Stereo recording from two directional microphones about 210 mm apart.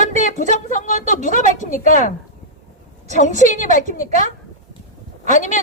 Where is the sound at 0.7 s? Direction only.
35° left (ahead or behind).